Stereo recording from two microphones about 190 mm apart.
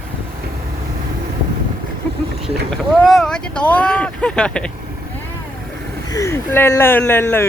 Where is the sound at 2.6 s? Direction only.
Centre (ahead or behind).